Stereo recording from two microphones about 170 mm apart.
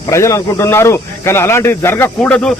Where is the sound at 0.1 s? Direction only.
15° left (ahead or behind).